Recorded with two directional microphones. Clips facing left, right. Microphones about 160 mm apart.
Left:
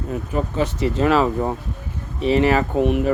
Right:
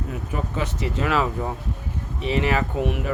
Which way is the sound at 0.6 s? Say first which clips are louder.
Left 8 dB; 30° left (ahead or behind).